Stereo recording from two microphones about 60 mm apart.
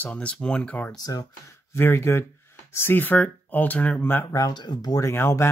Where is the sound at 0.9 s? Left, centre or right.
Left.